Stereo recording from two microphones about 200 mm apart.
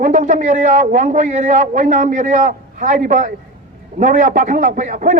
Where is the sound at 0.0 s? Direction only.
35° right (ahead or behind).